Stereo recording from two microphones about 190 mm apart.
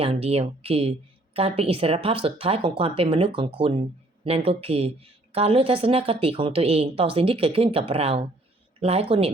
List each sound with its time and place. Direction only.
0.0 s a woman's voice: 35° right (ahead or behind)